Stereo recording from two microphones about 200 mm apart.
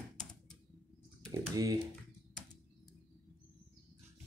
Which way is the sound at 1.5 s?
20° right (ahead or behind).